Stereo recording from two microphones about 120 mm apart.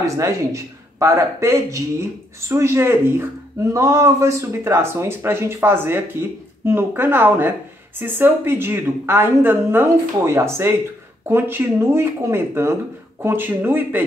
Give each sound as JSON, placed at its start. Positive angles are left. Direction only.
{"t": 0.0, "sound": "speech", "side_deg": -25}